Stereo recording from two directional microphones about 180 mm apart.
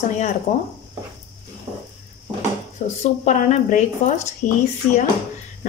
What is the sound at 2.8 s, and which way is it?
Speech, 40° left (ahead or behind).